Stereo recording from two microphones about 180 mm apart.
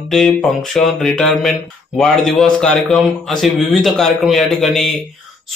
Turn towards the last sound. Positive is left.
turn(degrees=0)  # may be behind; listen again after turning